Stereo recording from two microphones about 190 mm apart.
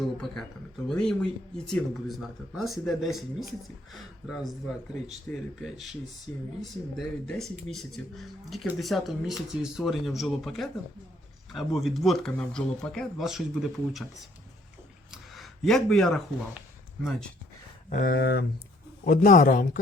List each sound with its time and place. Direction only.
0.9 s speech: 5° left (ahead or behind)
5.0 s speech: centre (ahead or behind)
17.8 s speech: 45° left (ahead or behind)
18.2 s speech: 60° left (ahead or behind)
19.0 s a man's voice: 45° left (ahead or behind)